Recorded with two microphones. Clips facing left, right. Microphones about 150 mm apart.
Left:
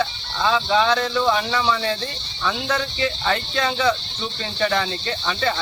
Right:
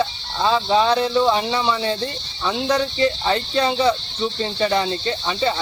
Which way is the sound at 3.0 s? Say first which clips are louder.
Right 4 dB; 25° right (ahead or behind).